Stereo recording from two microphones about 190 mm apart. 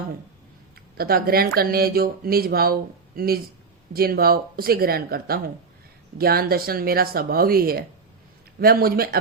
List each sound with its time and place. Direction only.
0.9 s speech: 50° right (ahead or behind)